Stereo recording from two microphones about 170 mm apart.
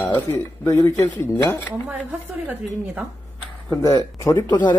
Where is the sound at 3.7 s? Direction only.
20° left (ahead or behind).